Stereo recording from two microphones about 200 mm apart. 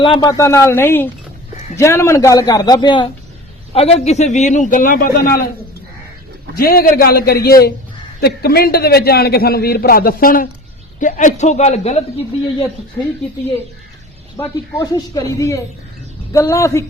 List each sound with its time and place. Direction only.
0.0 s a man's voice: 25° left (ahead or behind); by 5.5 s 45° left (ahead or behind)
6.6 s a man's voice: 50° left (ahead or behind); by 12.0 s 35° left (ahead or behind)
14.3 s a man's voice: 15° left (ahead or behind)